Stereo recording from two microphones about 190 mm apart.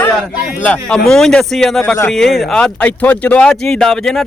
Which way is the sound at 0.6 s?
5° left (ahead or behind).